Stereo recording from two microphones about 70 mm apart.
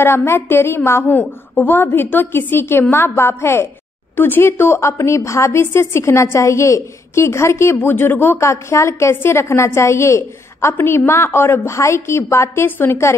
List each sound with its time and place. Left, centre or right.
0.0 s a woman's voice: left
7.8 s a woman's voice: left
12.6 s a woman's voice: left